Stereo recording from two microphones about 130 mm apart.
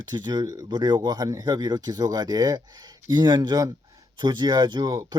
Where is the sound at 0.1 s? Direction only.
30° right (ahead or behind).